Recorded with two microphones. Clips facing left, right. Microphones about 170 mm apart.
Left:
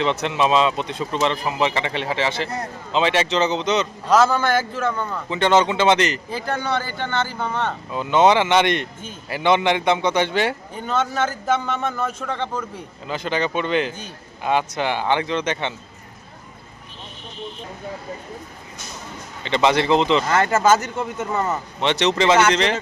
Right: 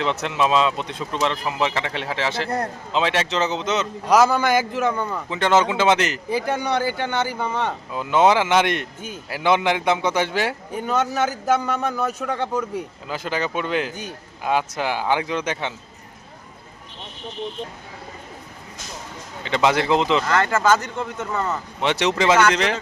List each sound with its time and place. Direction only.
0.0 s speech: centre (ahead or behind)
5.3 s speech: 5° right (ahead or behind)
19.5 s speech: 5° right (ahead or behind)
20.2 s speech: 20° left (ahead or behind)
21.8 s speech: 10° right (ahead or behind)